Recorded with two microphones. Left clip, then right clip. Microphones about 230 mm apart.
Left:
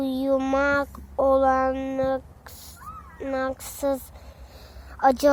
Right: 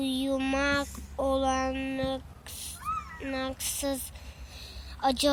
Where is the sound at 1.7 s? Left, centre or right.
Left.